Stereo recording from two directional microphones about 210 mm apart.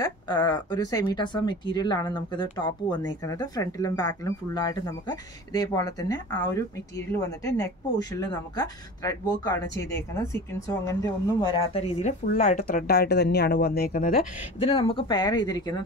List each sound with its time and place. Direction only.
0.0 s speech: 20° left (ahead or behind); by 14.2 s 45° left (ahead or behind)
14.6 s speech: 25° left (ahead or behind)